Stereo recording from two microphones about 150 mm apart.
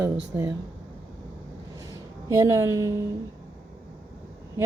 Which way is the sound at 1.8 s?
20° right (ahead or behind).